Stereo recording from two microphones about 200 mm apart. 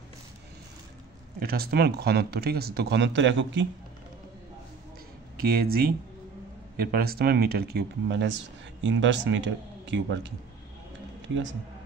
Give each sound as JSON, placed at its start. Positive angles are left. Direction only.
{"t": 1.4, "sound": "speech", "side_deg": -50}
{"t": 5.4, "sound": "speech", "side_deg": -50}